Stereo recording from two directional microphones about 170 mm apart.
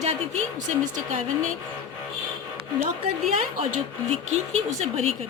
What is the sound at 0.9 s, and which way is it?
Speech, 45° right (ahead or behind).